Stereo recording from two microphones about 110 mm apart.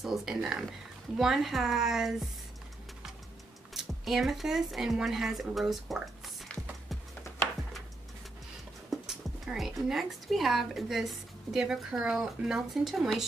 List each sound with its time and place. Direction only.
0.0 s speech: 5° right (ahead or behind)
3.7 s speech: centre (ahead or behind)
7.3 s a sound: 25° left (ahead or behind)
8.9 s speech: centre (ahead or behind)